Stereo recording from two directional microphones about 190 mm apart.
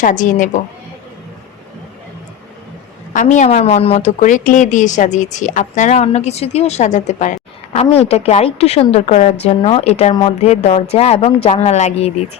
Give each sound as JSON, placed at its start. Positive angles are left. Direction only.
{"t": 0.0, "sound": "a woman's voice", "side_deg": 45}
{"t": 3.1, "sound": "a woman's voice", "side_deg": 40}